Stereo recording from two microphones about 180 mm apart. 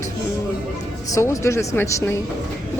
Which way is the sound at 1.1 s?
15° left (ahead or behind).